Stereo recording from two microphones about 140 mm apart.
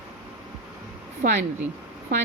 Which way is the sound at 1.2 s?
90° right.